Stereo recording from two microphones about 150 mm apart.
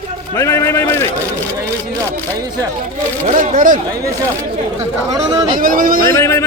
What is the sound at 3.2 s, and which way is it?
Speech, 55° right (ahead or behind).